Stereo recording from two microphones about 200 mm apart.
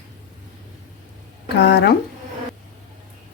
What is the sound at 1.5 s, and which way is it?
Speech, 55° left (ahead or behind).